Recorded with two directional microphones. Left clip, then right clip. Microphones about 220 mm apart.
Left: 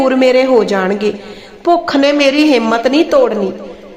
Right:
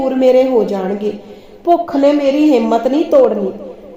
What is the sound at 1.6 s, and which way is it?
Speech, 30° left (ahead or behind).